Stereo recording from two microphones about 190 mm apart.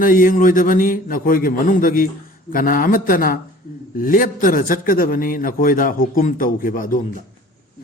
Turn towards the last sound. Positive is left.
turn(degrees=45)  # may be behind; listen again after turning